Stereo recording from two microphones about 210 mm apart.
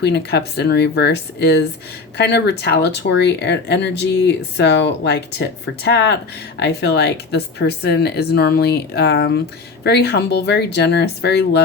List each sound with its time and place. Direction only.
0.0 s speech: 55° left (ahead or behind)